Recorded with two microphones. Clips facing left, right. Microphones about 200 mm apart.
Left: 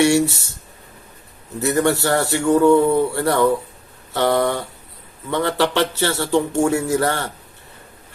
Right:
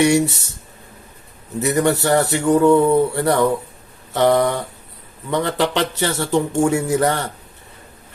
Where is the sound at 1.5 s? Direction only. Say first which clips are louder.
Right 1 dB; 20° right (ahead or behind).